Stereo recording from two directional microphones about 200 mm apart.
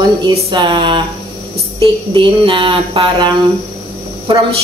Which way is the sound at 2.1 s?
25° right (ahead or behind).